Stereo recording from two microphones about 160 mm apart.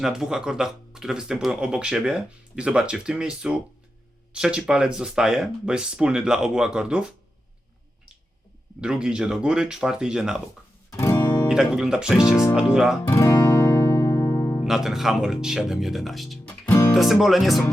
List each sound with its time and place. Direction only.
0.0 s speech: 5° right (ahead or behind)
8.8 s speech: 5° right (ahead or behind)
10.9 s music: 15° left (ahead or behind)
11.4 s speech: 5° right (ahead or behind)
13.1 s music: 20° left (ahead or behind)
14.6 s speech: centre (ahead or behind)
16.5 s music: 15° left (ahead or behind)
16.9 s speech: centre (ahead or behind)